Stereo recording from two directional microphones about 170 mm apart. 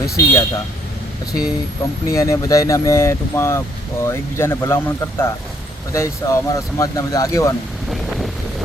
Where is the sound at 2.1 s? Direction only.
20° left (ahead or behind).